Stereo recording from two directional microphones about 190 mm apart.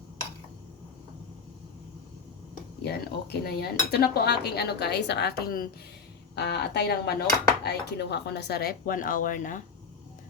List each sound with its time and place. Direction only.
2.8 s cutlery: 55° left (ahead or behind)